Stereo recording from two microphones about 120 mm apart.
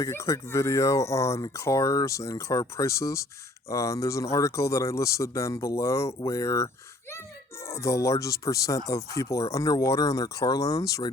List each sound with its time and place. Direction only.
0.0 s speech: 25° left (ahead or behind)